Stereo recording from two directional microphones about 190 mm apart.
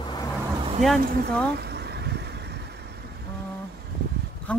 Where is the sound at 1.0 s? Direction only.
55° right (ahead or behind).